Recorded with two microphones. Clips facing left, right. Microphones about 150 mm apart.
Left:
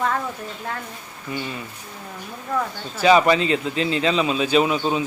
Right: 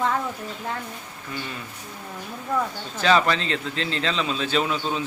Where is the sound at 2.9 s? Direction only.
10° left (ahead or behind).